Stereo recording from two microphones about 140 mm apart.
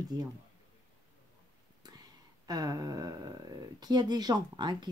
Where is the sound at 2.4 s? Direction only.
25° right (ahead or behind).